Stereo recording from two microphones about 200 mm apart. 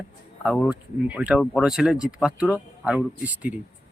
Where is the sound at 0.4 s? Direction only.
5° right (ahead or behind).